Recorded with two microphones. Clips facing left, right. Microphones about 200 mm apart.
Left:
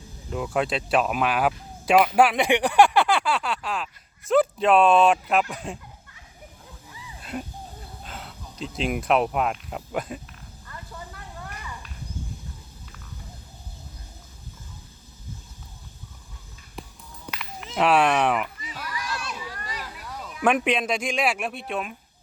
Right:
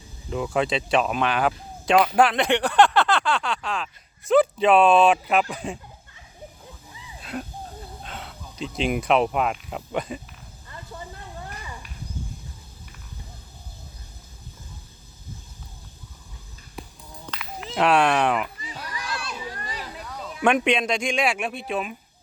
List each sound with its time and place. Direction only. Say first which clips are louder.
0.3 s speech: right 2 dB; centre (ahead or behind)
7.2 s a sound: right 1 dB; centre (ahead or behind)
8.0 s speech: right 2 dB; centre (ahead or behind)
10.7 s a sound: right 2 dB; 20° right (ahead or behind)
17.7 s speech: even; 5° left (ahead or behind)
18.6 s children playing: left 1 dB; 30° right (ahead or behind)
20.4 s speech: right 1 dB; 5° left (ahead or behind)